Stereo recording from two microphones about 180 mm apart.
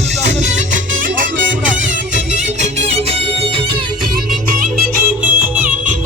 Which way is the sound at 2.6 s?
35° right (ahead or behind).